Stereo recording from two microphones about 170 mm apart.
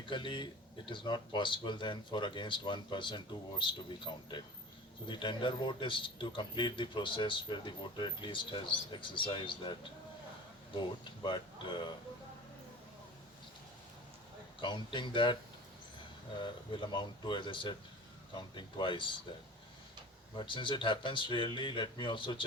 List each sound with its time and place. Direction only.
0.0 s speech: 30° left (ahead or behind)
10.8 s speech: 25° left (ahead or behind)
14.6 s speech: 30° left (ahead or behind)
16.4 s speech: 30° left (ahead or behind)
20.3 s speech: 30° left (ahead or behind)